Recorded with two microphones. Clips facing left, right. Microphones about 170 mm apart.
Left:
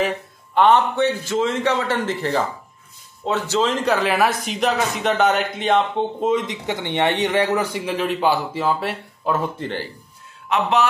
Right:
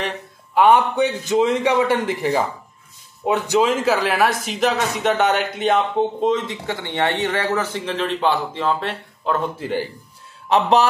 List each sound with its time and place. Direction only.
0.6 s a man's voice: 10° right (ahead or behind)
6.3 s speech: 20° left (ahead or behind)
9.6 s a man's voice: 10° right (ahead or behind)
10.5 s a man's voice: 35° right (ahead or behind)